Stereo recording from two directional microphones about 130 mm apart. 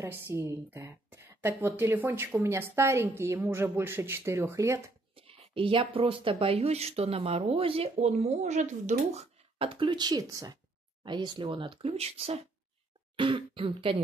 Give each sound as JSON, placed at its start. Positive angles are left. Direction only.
{"t": 0.0, "sound": "a woman's voice", "side_deg": -20}
{"t": 5.1, "sound": "speech", "side_deg": -45}
{"t": 9.6, "sound": "speech", "side_deg": -45}
{"t": 13.1, "sound": "speech", "side_deg": -40}